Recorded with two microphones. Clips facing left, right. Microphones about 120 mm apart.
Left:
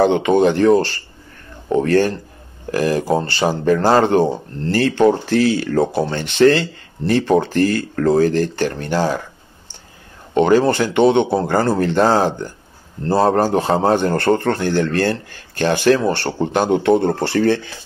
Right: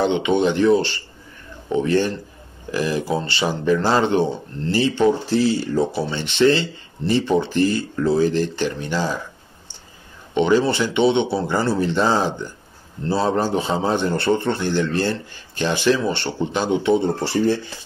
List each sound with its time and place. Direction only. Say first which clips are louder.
0.0 s speech: left 5 dB; 40° left (ahead or behind)
10.3 s speech: left 4 dB; 50° left (ahead or behind); by 17.6 s 70° left (ahead or behind)